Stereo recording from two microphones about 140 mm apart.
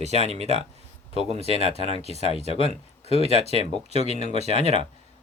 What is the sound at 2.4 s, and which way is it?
Speech, 45° left (ahead or behind).